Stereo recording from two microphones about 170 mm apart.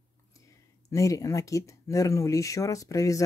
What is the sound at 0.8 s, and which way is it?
Speech, 20° left (ahead or behind).